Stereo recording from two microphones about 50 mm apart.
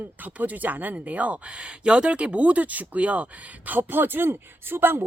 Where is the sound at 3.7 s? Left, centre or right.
Right.